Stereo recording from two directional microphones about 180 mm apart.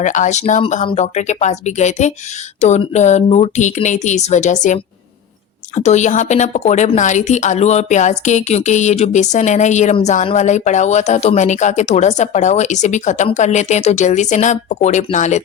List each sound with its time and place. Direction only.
0.0 s a woman's voice: 45° left (ahead or behind)